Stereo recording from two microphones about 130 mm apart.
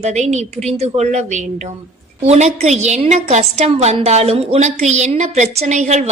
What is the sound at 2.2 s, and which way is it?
A woman's voice, 60° right (ahead or behind).